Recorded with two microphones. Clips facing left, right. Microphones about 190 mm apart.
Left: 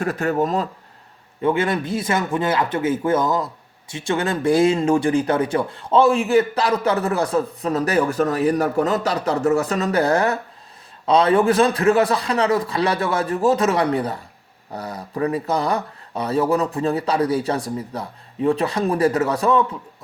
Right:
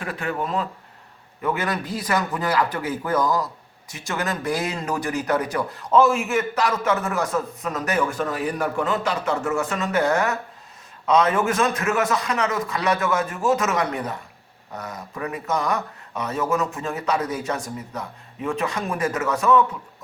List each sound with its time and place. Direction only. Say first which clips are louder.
0.0 s speech: left 7 dB; 45° left (ahead or behind)
1.4 s speech: left 5 dB; 25° left (ahead or behind)